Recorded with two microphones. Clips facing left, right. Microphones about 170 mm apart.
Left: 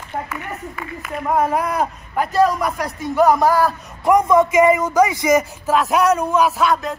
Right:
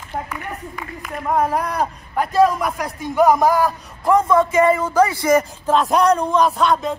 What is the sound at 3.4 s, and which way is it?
Speech, 15° right (ahead or behind).